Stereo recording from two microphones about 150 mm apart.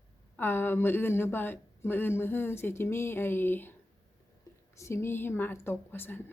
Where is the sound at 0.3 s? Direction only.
15° left (ahead or behind).